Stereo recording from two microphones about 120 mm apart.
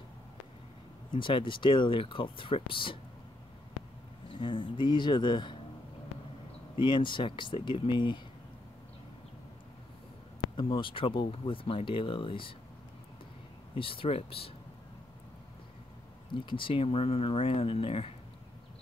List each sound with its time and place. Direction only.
1.1 s speech: 45° left (ahead or behind)
4.3 s speech: 45° left (ahead or behind)
6.8 s speech: 40° left (ahead or behind)
10.5 s speech: 45° left (ahead or behind)
13.7 s speech: 50° left (ahead or behind)
16.3 s speech: 45° left (ahead or behind)